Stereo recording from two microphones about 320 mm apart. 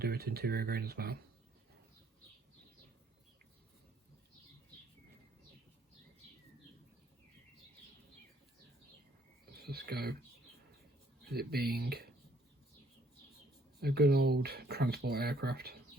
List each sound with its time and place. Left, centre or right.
0.0 s speech: right
9.6 s speech: right
11.3 s speech: right
13.8 s speech: right